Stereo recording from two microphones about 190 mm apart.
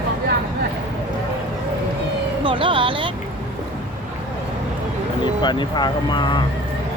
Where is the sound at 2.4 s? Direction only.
25° right (ahead or behind).